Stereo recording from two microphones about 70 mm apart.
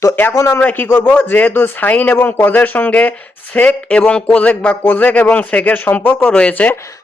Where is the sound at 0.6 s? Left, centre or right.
Left.